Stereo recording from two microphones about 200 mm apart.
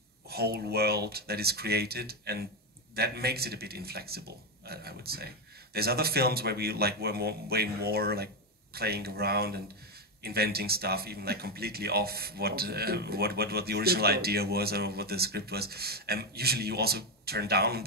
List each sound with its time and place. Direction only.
0.3 s speech: 50° right (ahead or behind)